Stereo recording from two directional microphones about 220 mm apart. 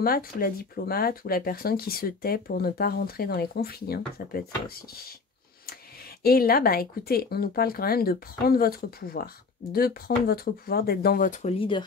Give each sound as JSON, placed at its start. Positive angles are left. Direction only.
{"t": 0.0, "sound": "speech", "side_deg": 40}
{"t": 6.2, "sound": "speech", "side_deg": 45}